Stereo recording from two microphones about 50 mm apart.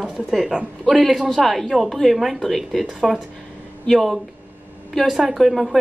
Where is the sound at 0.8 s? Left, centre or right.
Centre.